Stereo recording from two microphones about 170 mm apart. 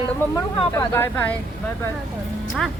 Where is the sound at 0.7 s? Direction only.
15° left (ahead or behind).